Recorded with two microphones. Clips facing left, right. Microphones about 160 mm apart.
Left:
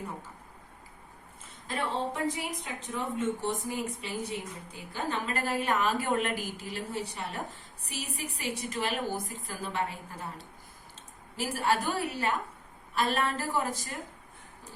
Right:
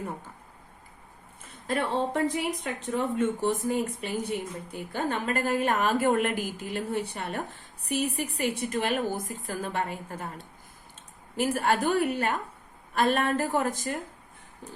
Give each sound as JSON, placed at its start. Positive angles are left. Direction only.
{"t": 1.6, "sound": "a woman's voice", "side_deg": -60}